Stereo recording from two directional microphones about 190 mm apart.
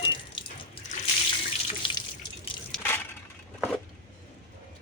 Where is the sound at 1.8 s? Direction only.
25° left (ahead or behind).